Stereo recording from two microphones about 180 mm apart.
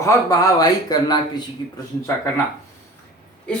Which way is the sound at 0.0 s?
15° left (ahead or behind).